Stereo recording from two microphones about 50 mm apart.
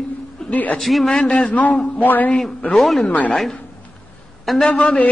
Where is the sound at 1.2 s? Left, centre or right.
Left.